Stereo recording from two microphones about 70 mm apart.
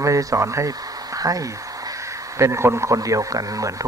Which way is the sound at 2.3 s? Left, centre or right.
Right.